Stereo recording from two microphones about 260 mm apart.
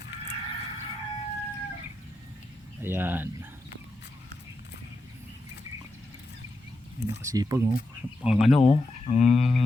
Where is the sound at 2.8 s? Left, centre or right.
Centre.